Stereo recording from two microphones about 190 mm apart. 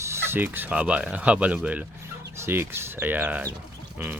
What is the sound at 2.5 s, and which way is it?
Speech, 10° right (ahead or behind).